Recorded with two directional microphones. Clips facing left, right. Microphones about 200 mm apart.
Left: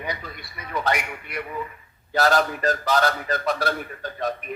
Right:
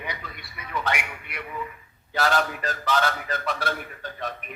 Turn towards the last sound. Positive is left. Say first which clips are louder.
# left 6 dB
turn(degrees=40)  # may be behind; listen again after turning